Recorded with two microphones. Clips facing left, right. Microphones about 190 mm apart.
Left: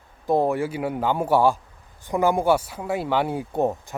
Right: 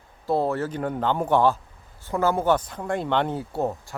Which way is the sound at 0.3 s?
15° left (ahead or behind).